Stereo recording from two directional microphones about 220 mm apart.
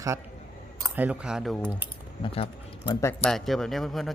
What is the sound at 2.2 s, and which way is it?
Speech, 25° left (ahead or behind).